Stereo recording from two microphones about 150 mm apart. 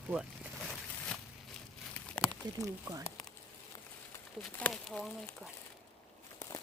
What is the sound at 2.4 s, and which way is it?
Speech, 30° right (ahead or behind).